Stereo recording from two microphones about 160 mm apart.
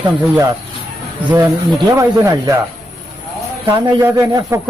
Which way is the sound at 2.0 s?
20° right (ahead or behind).